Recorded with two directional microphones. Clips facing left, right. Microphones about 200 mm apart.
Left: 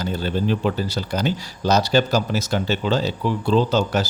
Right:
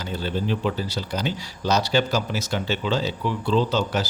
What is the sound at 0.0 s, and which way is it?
Speech, 45° left (ahead or behind).